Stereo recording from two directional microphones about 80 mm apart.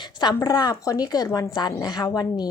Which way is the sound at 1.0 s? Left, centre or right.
Left.